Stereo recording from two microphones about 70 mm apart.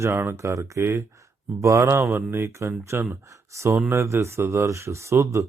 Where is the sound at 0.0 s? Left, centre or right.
Right.